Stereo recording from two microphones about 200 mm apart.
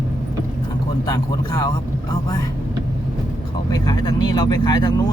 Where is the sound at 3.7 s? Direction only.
20° left (ahead or behind).